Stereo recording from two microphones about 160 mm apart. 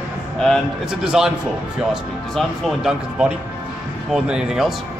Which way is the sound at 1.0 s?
5° right (ahead or behind).